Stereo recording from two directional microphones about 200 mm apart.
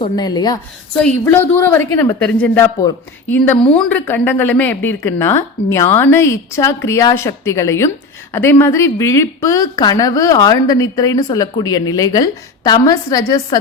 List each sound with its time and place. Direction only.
0.0 s speech: 20° left (ahead or behind)